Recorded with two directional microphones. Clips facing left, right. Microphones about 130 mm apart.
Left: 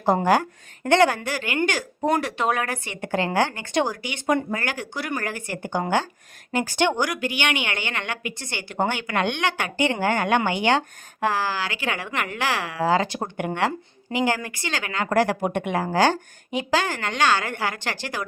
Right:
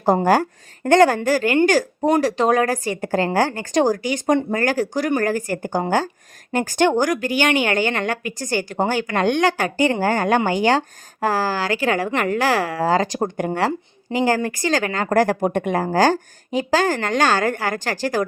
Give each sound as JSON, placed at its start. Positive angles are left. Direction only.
{"t": 0.0, "sound": "a woman's voice", "side_deg": -40}